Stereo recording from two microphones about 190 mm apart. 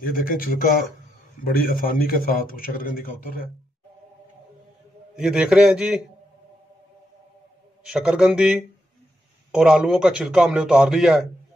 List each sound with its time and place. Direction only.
0.0 s a man's voice: 50° left (ahead or behind)
5.1 s a man's voice: 5° right (ahead or behind)
7.8 s a man's voice: 5° right (ahead or behind)